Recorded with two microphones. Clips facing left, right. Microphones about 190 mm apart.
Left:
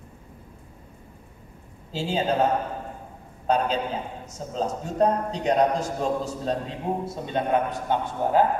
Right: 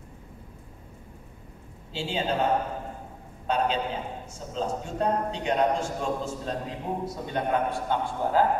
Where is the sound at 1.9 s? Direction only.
40° left (ahead or behind).